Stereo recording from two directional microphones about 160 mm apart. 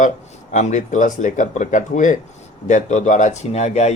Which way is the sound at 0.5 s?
50° left (ahead or behind).